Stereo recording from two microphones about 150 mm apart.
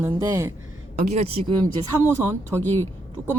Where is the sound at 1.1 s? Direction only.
45° right (ahead or behind).